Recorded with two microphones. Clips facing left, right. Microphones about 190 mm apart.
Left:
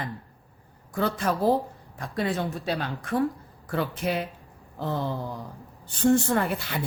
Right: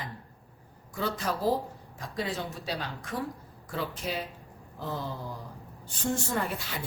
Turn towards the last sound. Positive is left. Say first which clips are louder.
# left 6 dB
turn(degrees=65)  # may be behind; listen again after turning